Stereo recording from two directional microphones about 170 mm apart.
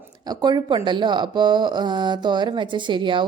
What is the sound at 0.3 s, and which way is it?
A woman's voice, 25° right (ahead or behind).